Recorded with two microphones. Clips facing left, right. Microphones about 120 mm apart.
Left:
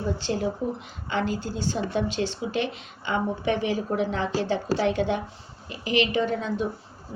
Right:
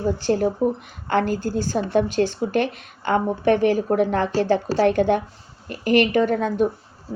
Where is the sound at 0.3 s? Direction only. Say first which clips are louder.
Right 9 dB; 50° right (ahead or behind).